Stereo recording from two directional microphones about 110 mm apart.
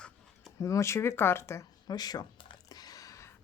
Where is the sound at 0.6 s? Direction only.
25° left (ahead or behind).